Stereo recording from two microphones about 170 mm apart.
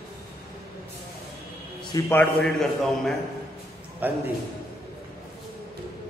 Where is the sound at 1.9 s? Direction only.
20° left (ahead or behind).